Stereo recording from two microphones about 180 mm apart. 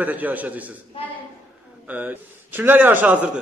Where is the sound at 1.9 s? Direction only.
10° right (ahead or behind).